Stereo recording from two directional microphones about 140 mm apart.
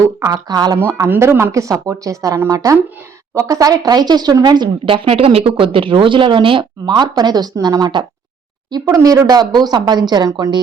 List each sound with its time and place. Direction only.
0.0 s speech: 25° right (ahead or behind)